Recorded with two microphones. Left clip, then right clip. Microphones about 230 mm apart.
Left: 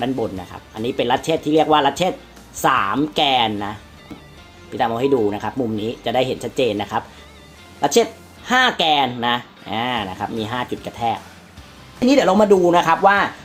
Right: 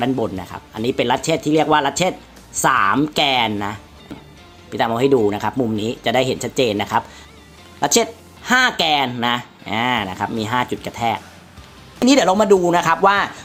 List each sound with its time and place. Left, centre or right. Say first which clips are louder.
0.0 s speech: right 2 dB; right
12.0 s speech: even; right